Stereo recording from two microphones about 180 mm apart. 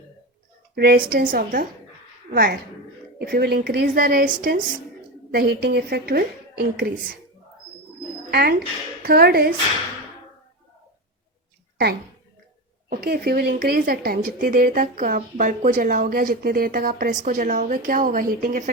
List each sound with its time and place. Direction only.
0.8 s a woman's voice: 60° right (ahead or behind)
5.3 s a woman's voice: 60° right (ahead or behind)
8.3 s a woman's voice: 60° right (ahead or behind)
12.9 s speech: 60° right (ahead or behind)